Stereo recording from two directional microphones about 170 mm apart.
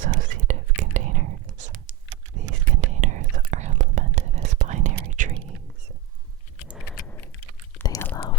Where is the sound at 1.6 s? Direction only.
50° right (ahead or behind).